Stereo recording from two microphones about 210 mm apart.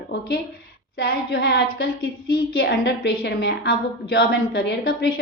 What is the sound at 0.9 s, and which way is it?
A woman's voice, 50° left (ahead or behind).